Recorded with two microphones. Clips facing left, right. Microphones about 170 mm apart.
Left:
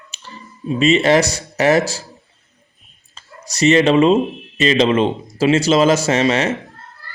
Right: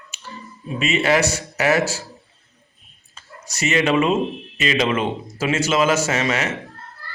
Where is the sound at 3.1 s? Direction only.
35° left (ahead or behind).